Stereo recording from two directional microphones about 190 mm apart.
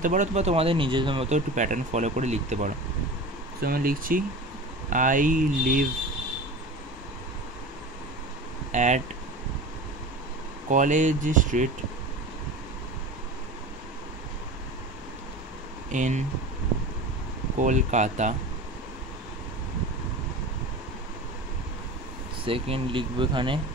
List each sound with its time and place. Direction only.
0.0 s speech: 40° right (ahead or behind)
3.6 s speech: 50° right (ahead or behind)
8.7 s speech: 40° right (ahead or behind)
10.7 s speech: 40° right (ahead or behind)
15.9 s speech: 40° right (ahead or behind)
17.6 s speech: 40° right (ahead or behind)
22.4 s speech: 30° right (ahead or behind)